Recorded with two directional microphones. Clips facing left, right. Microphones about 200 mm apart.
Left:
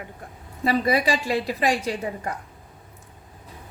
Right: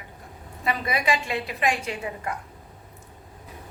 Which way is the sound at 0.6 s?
35° left (ahead or behind).